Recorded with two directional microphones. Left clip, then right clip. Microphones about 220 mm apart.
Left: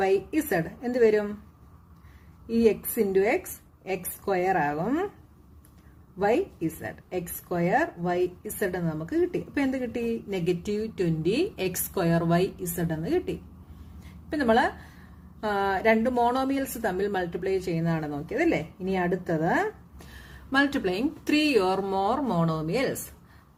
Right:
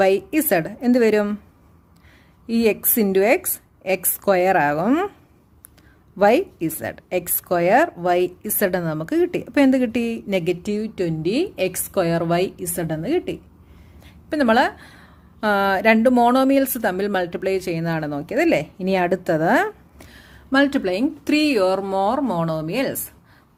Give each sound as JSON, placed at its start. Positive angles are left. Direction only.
{"t": 0.0, "sound": "a woman's voice", "side_deg": -40}
{"t": 2.5, "sound": "a woman's voice", "side_deg": -45}
{"t": 6.1, "sound": "a woman's voice", "side_deg": -45}
{"t": 20.0, "sound": "speech", "side_deg": -35}